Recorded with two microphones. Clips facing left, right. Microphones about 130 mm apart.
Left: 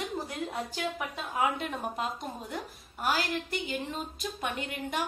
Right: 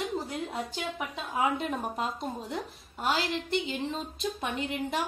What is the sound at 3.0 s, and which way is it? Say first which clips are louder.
A woman's voice: right 1 dB; 25° right (ahead or behind).